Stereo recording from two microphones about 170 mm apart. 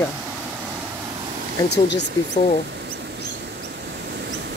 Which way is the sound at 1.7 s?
90° left.